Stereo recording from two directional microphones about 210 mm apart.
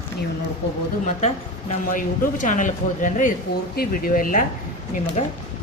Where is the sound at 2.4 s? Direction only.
35° left (ahead or behind).